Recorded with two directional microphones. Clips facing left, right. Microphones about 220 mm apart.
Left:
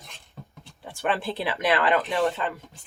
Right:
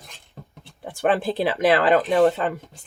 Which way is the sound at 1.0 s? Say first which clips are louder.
Right 6 dB; 45° right (ahead or behind).